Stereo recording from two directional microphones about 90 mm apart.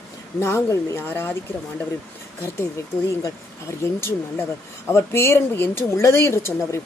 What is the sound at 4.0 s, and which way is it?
Speech, 30° left (ahead or behind).